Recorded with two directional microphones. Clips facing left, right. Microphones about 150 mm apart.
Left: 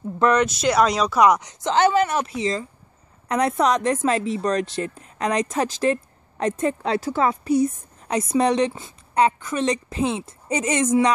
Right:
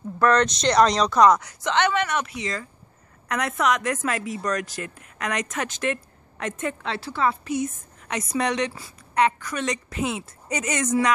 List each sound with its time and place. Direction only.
0.2 s speech: 10° left (ahead or behind)
1.6 s speech: 30° left (ahead or behind)